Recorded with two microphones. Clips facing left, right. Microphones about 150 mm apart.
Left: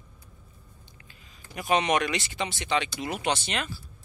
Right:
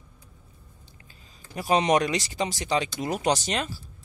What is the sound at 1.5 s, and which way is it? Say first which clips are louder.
Speech: right 3 dB; 35° right (ahead or behind).